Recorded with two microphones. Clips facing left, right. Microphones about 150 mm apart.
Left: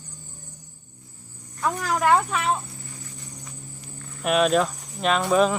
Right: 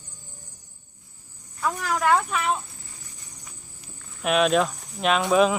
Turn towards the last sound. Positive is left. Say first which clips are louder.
# even
turn(degrees=0)  # may be behind; listen again after turning